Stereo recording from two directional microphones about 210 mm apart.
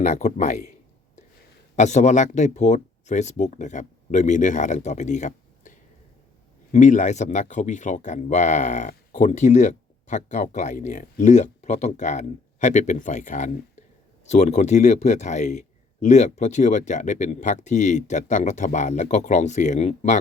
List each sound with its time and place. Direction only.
0.0 s speech: 35° left (ahead or behind)
1.7 s speech: 35° left (ahead or behind)